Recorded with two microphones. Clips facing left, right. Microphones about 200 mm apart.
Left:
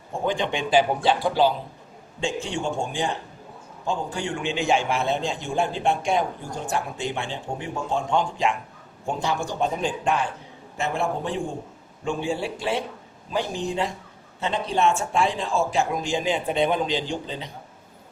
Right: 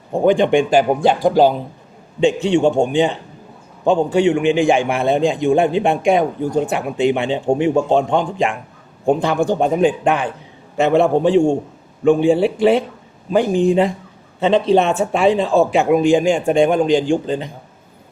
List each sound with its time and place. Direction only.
0.1 s speech: 55° right (ahead or behind)
2.2 s speech: 65° right (ahead or behind)
6.1 s speech: 75° right (ahead or behind)
10.8 s speech: 70° right (ahead or behind)
12.0 s speech: 55° right (ahead or behind)
14.3 s speech: 70° right (ahead or behind); by 17.5 s 50° right (ahead or behind)